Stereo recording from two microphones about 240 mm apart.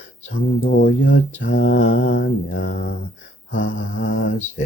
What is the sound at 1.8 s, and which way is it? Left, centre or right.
Speech, left.